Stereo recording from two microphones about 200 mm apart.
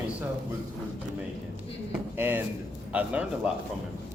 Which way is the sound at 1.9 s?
10° right (ahead or behind).